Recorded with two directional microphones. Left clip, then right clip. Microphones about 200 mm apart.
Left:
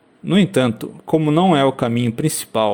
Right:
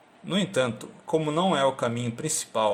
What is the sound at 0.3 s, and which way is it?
Speech, 35° left (ahead or behind).